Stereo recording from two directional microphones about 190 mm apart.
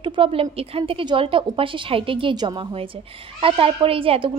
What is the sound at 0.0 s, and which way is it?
A woman's voice, 25° right (ahead or behind).